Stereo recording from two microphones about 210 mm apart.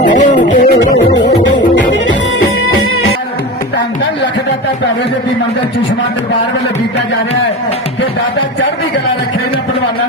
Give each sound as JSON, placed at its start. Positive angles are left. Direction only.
{"t": 0.0, "sound": "music", "side_deg": 35}
{"t": 0.9, "sound": "music", "side_deg": 60}